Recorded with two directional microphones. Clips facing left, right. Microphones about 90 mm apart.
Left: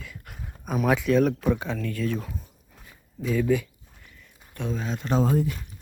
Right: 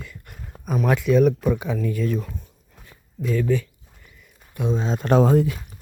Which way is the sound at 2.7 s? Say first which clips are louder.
Right 3 dB; 5° left (ahead or behind).